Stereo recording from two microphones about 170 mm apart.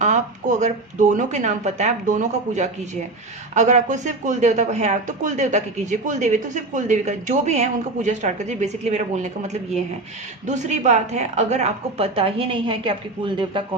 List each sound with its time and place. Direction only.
0.0 s a woman's voice: 45° right (ahead or behind); by 13.6 s 30° right (ahead or behind)